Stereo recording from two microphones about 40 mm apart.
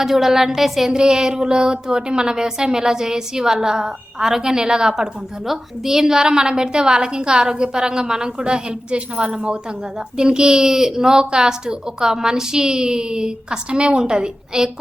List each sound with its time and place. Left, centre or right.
0.0 s a woman's voice: centre
0.9 s a woman's voice: centre